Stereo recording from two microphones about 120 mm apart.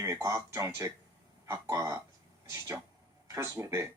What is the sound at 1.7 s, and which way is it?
Speech, 25° right (ahead or behind).